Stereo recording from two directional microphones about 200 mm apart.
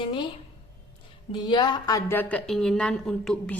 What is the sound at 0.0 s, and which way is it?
Speech, 25° left (ahead or behind).